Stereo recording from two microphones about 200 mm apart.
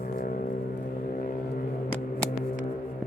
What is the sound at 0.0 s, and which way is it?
Vehicle, 45° left (ahead or behind).